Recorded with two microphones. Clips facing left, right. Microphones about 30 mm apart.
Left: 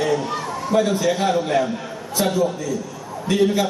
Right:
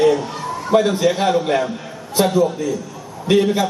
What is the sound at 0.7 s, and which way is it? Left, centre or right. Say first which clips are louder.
A man's voice: right 3 dB; centre.